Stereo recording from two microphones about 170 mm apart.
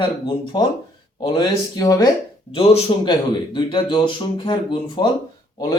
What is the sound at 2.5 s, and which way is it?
A man's voice, 30° left (ahead or behind).